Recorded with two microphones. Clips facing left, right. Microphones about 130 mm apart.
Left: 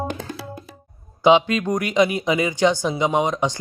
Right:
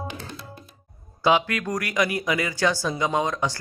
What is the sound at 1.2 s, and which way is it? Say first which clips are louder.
A man's voice: left 6 dB; 20° left (ahead or behind).